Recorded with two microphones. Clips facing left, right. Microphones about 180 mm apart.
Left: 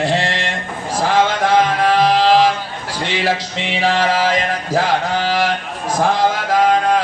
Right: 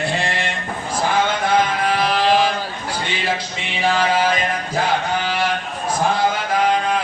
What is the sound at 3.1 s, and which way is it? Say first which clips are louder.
Music: left 7 dB; 90° left.